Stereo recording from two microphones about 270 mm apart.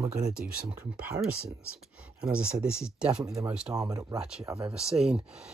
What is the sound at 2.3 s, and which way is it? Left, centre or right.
Speech, centre.